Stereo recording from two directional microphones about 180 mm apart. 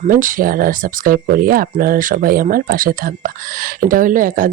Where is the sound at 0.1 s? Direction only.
50° right (ahead or behind).